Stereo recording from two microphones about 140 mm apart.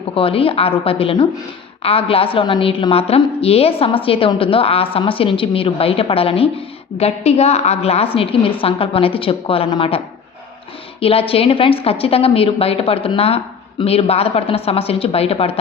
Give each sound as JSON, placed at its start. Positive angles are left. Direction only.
{"t": 0.1, "sound": "a woman's voice", "side_deg": 40}
{"t": 11.0, "sound": "a woman's voice", "side_deg": 45}